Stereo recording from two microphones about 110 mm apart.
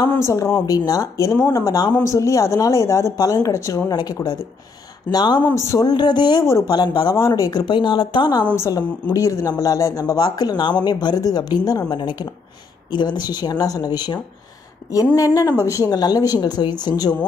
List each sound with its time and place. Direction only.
0.2 s speech: 25° left (ahead or behind); by 7.2 s 45° left (ahead or behind)
7.2 s speech: 35° left (ahead or behind)
7.6 s speech: 50° left (ahead or behind)
9.1 s speech: 30° left (ahead or behind)
10.1 s speech: 40° left (ahead or behind)